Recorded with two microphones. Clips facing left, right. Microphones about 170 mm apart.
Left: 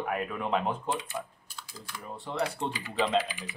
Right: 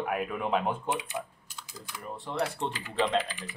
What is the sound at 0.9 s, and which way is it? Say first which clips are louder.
Speech: right 1 dB; 20° right (ahead or behind).